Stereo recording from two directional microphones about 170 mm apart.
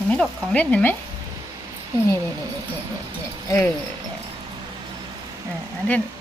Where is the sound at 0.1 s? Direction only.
5° left (ahead or behind).